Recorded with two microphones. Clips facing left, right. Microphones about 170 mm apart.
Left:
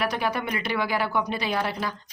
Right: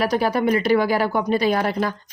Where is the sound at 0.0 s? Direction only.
35° right (ahead or behind).